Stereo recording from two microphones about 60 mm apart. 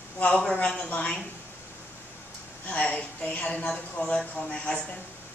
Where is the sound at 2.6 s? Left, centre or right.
Left.